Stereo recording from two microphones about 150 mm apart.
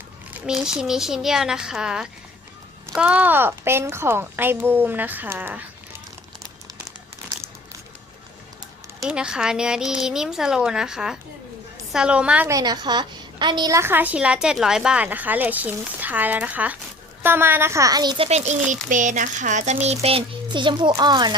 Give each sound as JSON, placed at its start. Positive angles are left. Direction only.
{"t": 0.3, "sound": "a woman's voice", "side_deg": -5}
{"t": 9.0, "sound": "a woman's voice", "side_deg": -5}
{"t": 12.5, "sound": "a woman's voice", "side_deg": -25}
{"t": 18.3, "sound": "a child's voice", "side_deg": -45}
{"t": 18.7, "sound": "speech", "side_deg": -55}
{"t": 19.7, "sound": "a child's voice", "side_deg": -45}